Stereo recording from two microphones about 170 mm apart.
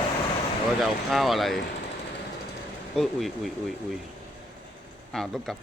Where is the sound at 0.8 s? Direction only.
Centre (ahead or behind).